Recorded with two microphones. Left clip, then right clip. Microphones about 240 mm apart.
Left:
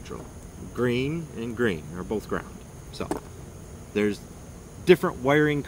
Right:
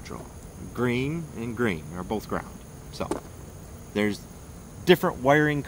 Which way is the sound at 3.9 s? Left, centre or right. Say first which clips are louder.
Left 1 dB; centre.